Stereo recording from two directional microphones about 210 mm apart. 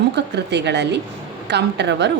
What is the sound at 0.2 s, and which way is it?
A woman's voice, 55° right (ahead or behind).